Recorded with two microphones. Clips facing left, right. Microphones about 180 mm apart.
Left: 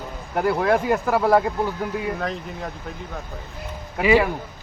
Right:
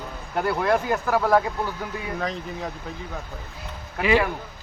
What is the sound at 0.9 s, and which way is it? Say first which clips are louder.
Speech: left 2 dB; 15° left (ahead or behind).